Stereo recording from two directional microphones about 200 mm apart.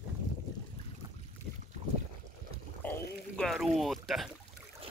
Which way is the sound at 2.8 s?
10° left (ahead or behind).